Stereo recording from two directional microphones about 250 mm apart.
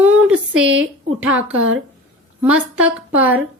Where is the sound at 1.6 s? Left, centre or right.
Right.